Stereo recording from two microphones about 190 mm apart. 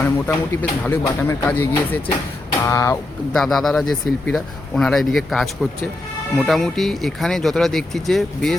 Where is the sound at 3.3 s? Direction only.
Centre (ahead or behind).